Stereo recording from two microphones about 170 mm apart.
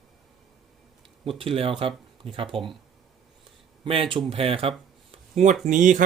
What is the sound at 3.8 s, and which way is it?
Speech, 30° right (ahead or behind).